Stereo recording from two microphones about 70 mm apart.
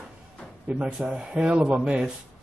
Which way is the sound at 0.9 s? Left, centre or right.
Centre.